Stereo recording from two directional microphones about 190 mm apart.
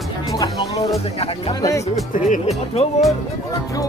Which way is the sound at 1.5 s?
20° left (ahead or behind).